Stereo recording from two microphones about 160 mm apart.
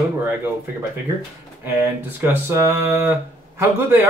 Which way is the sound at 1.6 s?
15° right (ahead or behind).